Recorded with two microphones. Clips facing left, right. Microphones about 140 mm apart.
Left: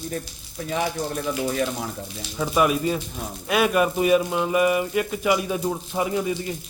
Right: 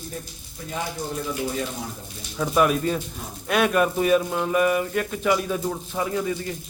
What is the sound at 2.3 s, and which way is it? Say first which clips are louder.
Speech: even; 5° left (ahead or behind).